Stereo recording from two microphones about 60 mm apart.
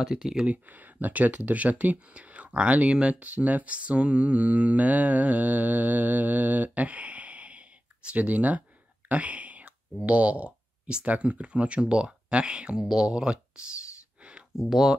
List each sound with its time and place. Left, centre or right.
0.0 s speech: centre
0.5 s speech: right
9.1 s whispering: right
10.0 s speech: right
14.6 s speech: centre